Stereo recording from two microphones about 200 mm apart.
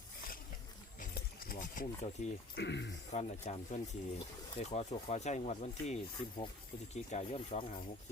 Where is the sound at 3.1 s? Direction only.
35° left (ahead or behind).